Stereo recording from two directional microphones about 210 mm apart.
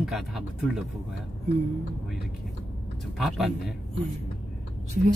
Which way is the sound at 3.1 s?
Centre (ahead or behind).